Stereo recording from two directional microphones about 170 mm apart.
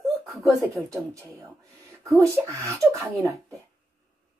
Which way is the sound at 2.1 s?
15° right (ahead or behind).